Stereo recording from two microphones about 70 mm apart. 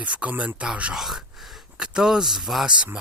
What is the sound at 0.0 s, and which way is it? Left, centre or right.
Speech, centre.